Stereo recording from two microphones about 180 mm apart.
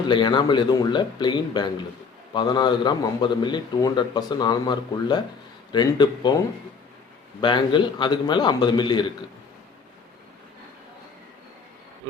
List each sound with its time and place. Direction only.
0.1 s a man's voice: 25° left (ahead or behind)
7.4 s a man's voice: 25° left (ahead or behind)